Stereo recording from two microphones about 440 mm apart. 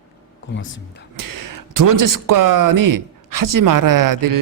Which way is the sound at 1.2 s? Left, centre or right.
Right.